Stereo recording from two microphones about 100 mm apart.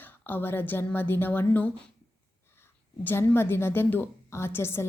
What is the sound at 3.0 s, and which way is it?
A woman's voice, 25° left (ahead or behind).